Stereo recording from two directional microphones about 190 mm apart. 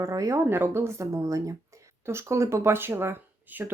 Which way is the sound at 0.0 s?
15° right (ahead or behind).